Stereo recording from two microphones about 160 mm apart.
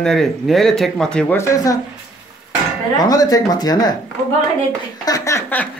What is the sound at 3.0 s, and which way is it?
Speech, 25° left (ahead or behind).